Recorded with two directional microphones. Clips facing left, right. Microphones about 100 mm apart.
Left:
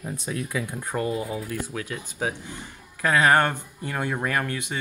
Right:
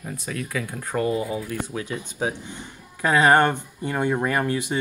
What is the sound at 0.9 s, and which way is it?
Speech, centre (ahead or behind).